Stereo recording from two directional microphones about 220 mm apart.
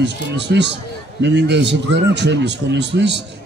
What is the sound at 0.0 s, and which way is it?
A man's voice, 50° right (ahead or behind).